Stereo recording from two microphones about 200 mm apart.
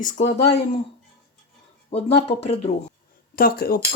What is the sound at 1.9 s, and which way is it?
Speech, 30° left (ahead or behind).